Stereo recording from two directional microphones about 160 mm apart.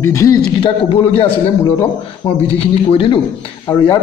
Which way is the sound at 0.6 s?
35° left (ahead or behind).